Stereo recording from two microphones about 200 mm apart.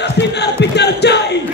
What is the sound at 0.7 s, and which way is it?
Music, 55° left (ahead or behind).